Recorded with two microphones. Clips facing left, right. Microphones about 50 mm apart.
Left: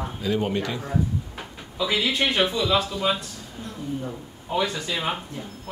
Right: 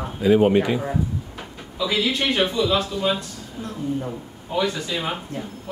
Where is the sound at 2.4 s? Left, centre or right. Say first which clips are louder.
Right 2 dB; centre.